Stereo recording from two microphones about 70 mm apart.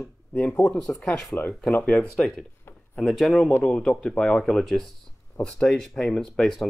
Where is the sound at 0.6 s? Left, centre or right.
Left.